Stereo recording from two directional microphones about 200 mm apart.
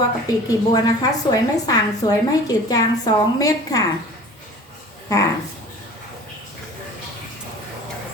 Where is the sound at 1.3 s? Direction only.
20° left (ahead or behind).